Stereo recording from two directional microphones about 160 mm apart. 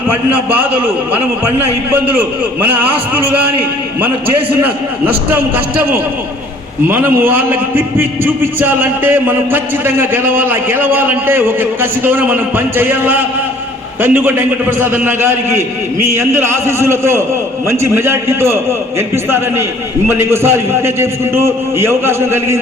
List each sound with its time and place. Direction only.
0.1 s a man's voice: 10° right (ahead or behind)
1.9 s a man's voice: 10° right (ahead or behind)
6.8 s a man's voice: 10° right (ahead or behind)